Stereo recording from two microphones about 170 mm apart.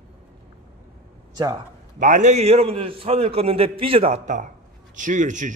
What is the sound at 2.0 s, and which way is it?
A man's voice, 45° right (ahead or behind).